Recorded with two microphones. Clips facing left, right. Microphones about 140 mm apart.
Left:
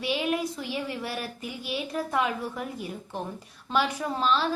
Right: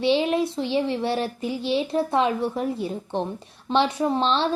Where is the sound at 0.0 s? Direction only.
30° right (ahead or behind).